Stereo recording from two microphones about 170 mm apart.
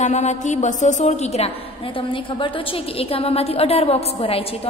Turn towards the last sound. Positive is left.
turn(degrees=35)  # may be behind; listen again after turning